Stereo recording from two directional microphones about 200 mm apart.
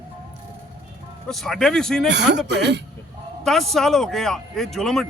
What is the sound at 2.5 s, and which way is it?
Speech, 60° right (ahead or behind).